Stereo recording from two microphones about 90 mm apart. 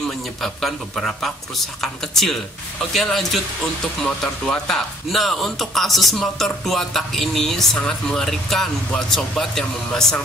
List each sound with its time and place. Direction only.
0.4 s speech: 5° left (ahead or behind)